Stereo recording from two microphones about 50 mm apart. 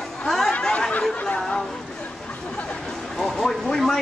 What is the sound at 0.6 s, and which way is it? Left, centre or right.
Chatter, centre.